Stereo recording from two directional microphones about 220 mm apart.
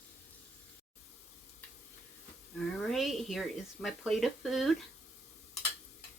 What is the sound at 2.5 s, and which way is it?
Speech, centre (ahead or behind).